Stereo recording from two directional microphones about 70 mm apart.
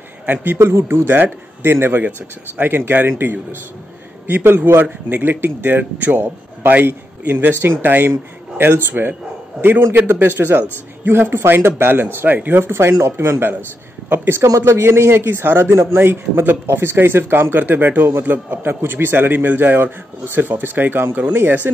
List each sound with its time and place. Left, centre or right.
0.3 s a man's voice: right
14.4 s a man's voice: right